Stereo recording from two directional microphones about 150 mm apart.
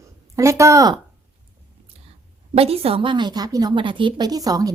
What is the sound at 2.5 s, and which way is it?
A woman's voice, 40° right (ahead or behind).